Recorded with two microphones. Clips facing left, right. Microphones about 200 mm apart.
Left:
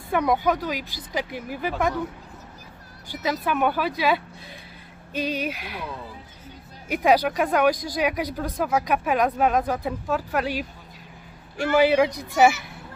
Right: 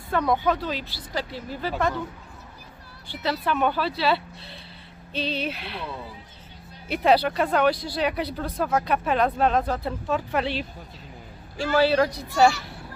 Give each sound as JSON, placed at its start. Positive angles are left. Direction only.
{"t": 0.1, "sound": "speech", "side_deg": 15}
{"t": 3.4, "sound": "speech", "side_deg": 10}
{"t": 6.9, "sound": "speech", "side_deg": 10}
{"t": 11.7, "sound": "speech", "side_deg": 15}